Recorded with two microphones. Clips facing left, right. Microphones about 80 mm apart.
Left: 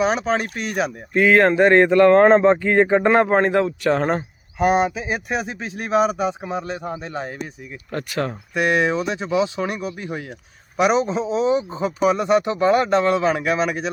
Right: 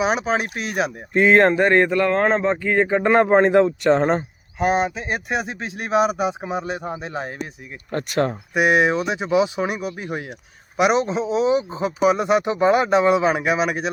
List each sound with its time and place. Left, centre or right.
0.0 s speech: centre
1.3 s speech: centre
1.9 s speech: centre
3.3 s speech: centre
4.1 s speech: centre
7.9 s speech: right
8.5 s speech: centre
10.8 s speech: centre